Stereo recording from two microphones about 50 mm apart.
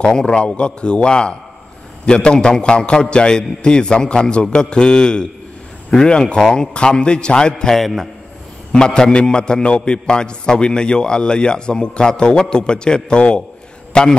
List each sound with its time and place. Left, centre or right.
0.0 s a man's voice: centre
7.7 s a man's voice: centre
8.7 s a man's voice: centre